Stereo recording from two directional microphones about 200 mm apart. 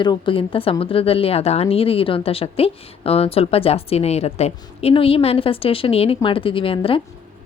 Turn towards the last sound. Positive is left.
turn(degrees=25)  # may be behind; listen again after turning